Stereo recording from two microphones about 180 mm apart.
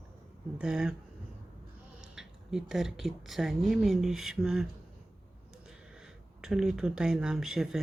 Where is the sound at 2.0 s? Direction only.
Centre (ahead or behind).